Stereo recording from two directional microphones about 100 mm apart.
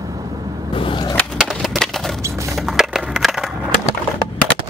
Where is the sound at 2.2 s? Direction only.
30° right (ahead or behind).